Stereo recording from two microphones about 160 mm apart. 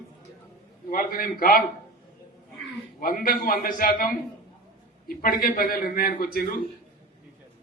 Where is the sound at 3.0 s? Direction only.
65° left (ahead or behind).